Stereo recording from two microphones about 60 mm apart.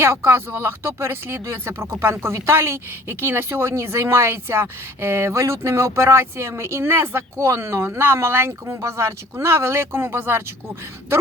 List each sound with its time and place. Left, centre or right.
0.0 s speech: right
3.7 s speech: right
7.3 s speech: right
8.8 s speech: right